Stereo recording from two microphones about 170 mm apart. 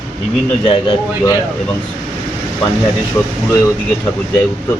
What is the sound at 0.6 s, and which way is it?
Speech, 30° left (ahead or behind).